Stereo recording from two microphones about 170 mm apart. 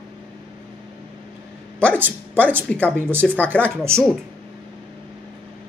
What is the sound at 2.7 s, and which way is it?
Speech, 10° left (ahead or behind).